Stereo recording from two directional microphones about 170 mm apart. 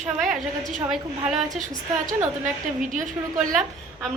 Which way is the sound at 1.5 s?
50° right (ahead or behind).